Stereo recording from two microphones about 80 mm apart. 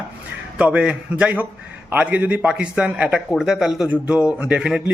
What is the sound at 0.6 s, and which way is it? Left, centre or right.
Speech, centre.